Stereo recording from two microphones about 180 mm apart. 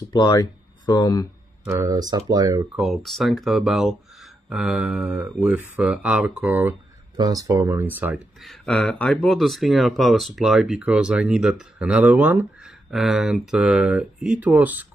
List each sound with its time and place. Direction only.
0.1 s speech: 20° left (ahead or behind)
1.6 s speech: 15° right (ahead or behind)
2.7 s speech: centre (ahead or behind)
7.2 s speech: 20° right (ahead or behind)